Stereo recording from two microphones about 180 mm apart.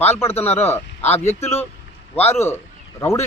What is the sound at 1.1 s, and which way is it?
Speech, 35° left (ahead or behind).